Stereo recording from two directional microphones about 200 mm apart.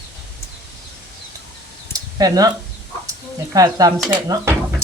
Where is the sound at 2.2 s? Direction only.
20° right (ahead or behind).